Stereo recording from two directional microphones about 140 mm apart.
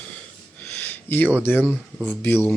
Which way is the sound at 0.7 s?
10° left (ahead or behind).